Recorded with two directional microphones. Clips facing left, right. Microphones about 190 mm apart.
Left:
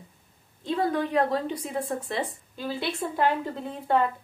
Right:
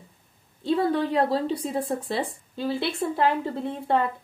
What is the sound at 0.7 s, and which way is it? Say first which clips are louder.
A woman's voice: right 3 dB; 30° right (ahead or behind).